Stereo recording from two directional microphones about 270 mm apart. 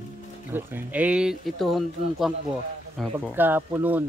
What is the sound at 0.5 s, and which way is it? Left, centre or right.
Speech, centre.